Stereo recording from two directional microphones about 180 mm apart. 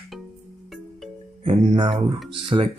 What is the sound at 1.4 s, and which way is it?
Speech, 30° right (ahead or behind).